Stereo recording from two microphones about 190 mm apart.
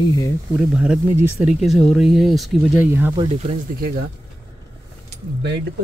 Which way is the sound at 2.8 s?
10° right (ahead or behind).